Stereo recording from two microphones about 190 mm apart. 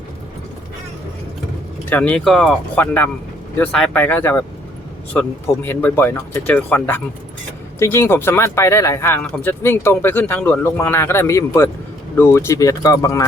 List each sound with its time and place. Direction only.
1.8 s speech: 10° left (ahead or behind)